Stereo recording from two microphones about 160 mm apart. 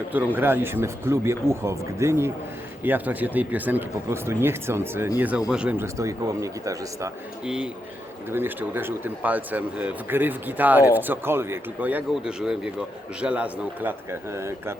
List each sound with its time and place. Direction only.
0.3 s speech: 15° right (ahead or behind)
5.8 s speech: 20° right (ahead or behind)
7.4 s speech: 5° right (ahead or behind)